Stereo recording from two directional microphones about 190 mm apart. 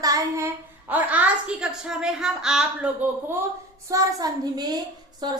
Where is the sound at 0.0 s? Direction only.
15° right (ahead or behind).